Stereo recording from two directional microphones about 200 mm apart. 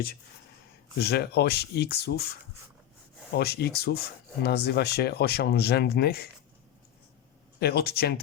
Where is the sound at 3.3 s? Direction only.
55° left (ahead or behind).